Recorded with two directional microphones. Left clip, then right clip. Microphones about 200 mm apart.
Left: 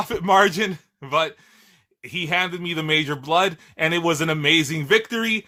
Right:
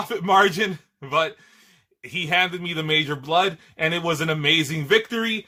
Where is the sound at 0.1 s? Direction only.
25° left (ahead or behind).